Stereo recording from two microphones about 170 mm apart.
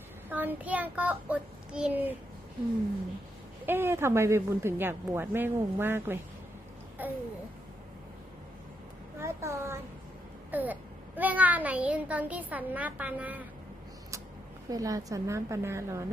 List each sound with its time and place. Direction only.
0.3 s a child's voice: 10° right (ahead or behind)
3.7 s a child's voice: 15° right (ahead or behind)
7.0 s babbling: 10° right (ahead or behind)
9.1 s a sound: 15° right (ahead or behind)
10.5 s a child's voice: 10° right (ahead or behind)
14.7 s a child's voice: 20° right (ahead or behind)